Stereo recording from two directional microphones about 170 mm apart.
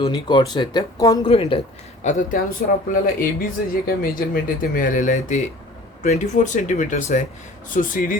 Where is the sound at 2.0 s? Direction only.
45° left (ahead or behind).